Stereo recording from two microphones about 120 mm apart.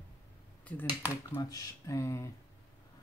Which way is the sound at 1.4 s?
30° left (ahead or behind).